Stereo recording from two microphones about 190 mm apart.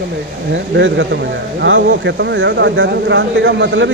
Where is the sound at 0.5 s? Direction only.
80° right.